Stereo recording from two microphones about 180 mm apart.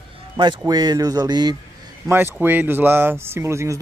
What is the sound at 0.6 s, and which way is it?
Speech, 20° right (ahead or behind).